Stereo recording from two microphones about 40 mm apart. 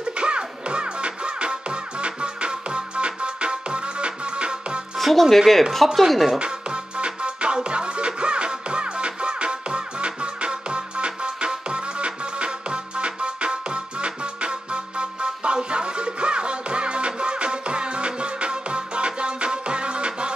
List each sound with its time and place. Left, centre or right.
0.0 s music: right
4.9 s speech: centre
6.3 s music: right